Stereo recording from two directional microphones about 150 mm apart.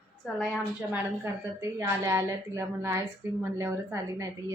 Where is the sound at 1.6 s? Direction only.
20° right (ahead or behind).